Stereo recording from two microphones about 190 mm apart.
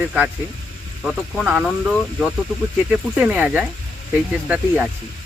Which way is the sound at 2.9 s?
5° right (ahead or behind).